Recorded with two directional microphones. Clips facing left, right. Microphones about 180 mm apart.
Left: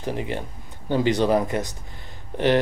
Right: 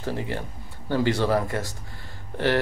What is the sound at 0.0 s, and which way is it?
Speech, 20° left (ahead or behind).